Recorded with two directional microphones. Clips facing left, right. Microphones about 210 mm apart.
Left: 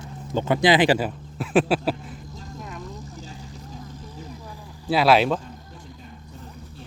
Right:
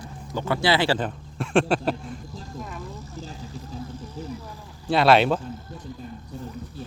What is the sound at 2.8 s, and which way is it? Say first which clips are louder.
Vehicle: even; 15° left (ahead or behind).